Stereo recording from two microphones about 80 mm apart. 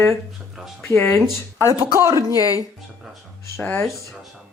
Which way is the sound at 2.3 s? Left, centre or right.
Left.